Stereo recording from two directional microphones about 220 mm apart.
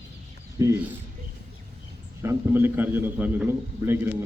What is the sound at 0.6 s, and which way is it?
Speech, 10° right (ahead or behind).